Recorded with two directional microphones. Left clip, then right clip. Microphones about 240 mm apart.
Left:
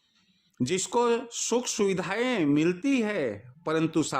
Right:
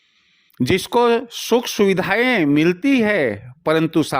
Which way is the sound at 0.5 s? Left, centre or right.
Right.